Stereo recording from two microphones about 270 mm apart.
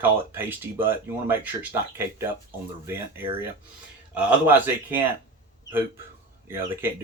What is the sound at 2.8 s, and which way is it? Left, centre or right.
Speech, centre.